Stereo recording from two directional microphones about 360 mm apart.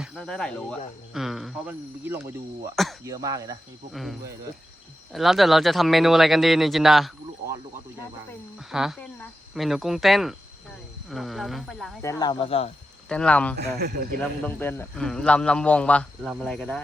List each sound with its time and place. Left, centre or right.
0.0 s a man's voice: centre
8.5 s a man's voice: centre
12.2 s speech: centre
13.1 s a man's voice: centre
13.6 s speech: right
14.2 s a man's voice: centre